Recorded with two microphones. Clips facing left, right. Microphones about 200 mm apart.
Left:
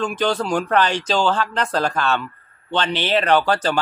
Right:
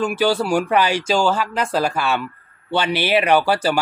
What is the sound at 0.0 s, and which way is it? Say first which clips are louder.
A man's voice: right 3 dB; 10° right (ahead or behind).